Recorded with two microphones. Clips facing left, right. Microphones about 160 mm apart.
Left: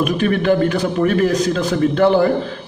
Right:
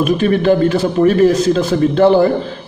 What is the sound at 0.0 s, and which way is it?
A man's voice, 30° right (ahead or behind).